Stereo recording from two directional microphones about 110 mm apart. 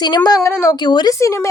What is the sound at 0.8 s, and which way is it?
Speech, 40° left (ahead or behind).